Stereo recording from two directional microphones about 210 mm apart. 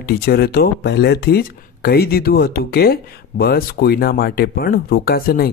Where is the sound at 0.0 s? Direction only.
50° left (ahead or behind).